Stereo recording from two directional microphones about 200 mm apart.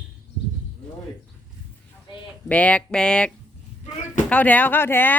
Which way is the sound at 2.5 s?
5° left (ahead or behind).